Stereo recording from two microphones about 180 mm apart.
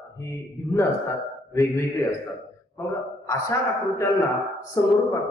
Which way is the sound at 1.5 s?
15° left (ahead or behind).